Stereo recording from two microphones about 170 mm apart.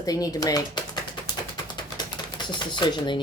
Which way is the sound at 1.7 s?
25° left (ahead or behind).